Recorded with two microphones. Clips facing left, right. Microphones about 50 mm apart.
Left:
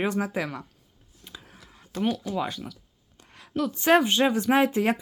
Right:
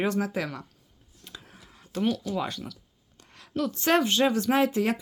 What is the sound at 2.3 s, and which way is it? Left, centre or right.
Speech, centre.